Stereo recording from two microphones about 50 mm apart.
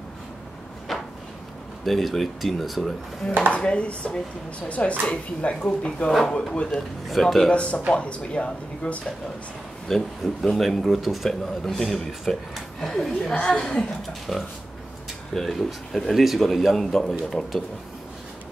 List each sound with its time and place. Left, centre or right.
1.9 s a man's voice: centre
3.5 s a man's voice: left
7.1 s a man's voice: centre
7.5 s speech: left
9.8 s a man's voice: centre
13.3 s speech: left
14.3 s a man's voice: centre